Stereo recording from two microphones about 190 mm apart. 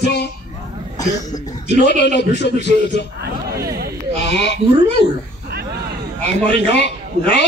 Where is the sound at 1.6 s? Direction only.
65° left (ahead or behind).